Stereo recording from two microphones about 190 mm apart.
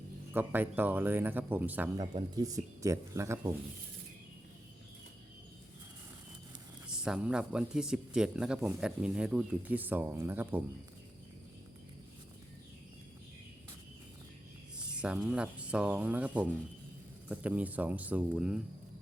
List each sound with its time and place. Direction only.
0.3 s speech: 10° right (ahead or behind)
2.0 s speech: 20° right (ahead or behind)
6.8 s a man's voice: 5° right (ahead or behind)
14.8 s speech: 5° right (ahead or behind)